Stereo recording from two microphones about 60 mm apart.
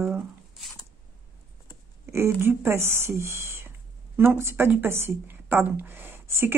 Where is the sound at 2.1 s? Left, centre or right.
Right.